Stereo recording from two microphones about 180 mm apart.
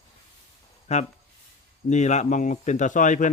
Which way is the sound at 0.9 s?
35° left (ahead or behind).